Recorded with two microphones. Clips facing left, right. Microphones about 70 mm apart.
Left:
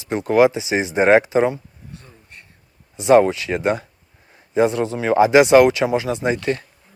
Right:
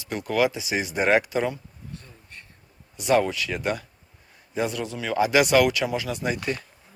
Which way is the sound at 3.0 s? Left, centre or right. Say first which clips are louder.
Left 8 dB; left.